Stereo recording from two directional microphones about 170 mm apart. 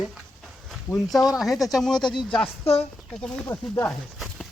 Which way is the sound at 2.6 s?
35° left (ahead or behind).